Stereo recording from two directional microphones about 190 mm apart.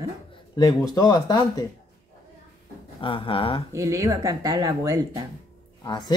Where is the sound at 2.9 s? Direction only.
25° left (ahead or behind).